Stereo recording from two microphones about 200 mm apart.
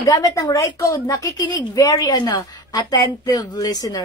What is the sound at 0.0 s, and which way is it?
A woman's voice, 15° left (ahead or behind).